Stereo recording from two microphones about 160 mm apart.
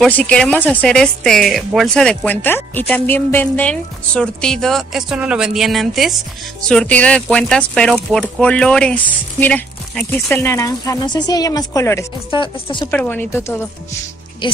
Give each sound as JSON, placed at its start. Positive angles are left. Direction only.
{"t": 0.0, "sound": "speech", "side_deg": 5}
{"t": 10.3, "sound": "speech", "side_deg": 15}
{"t": 12.3, "sound": "speech", "side_deg": 30}
{"t": 12.9, "sound": "speech", "side_deg": 10}
{"t": 14.4, "sound": "speech", "side_deg": 30}